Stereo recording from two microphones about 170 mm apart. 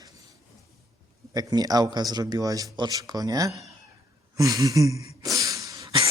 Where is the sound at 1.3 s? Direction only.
20° right (ahead or behind).